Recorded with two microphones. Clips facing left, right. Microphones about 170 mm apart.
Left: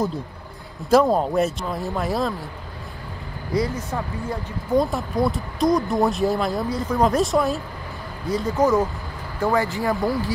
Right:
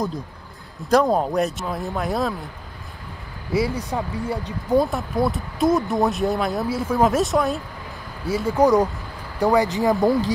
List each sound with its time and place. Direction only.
0.7 s speech: centre (ahead or behind)
3.5 s speech: 10° right (ahead or behind)
4.7 s speech: centre (ahead or behind); by 10.3 s 20° right (ahead or behind)